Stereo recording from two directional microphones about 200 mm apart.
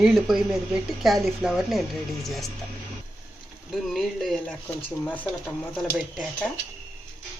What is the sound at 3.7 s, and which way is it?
Speech, centre (ahead or behind).